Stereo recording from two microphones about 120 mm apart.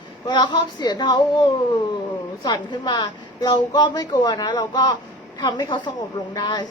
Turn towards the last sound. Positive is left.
turn(degrees=40)  # may be behind; listen again after turning